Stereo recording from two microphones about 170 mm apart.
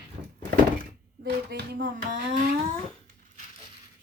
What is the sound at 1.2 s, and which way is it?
Speech, 75° right (ahead or behind).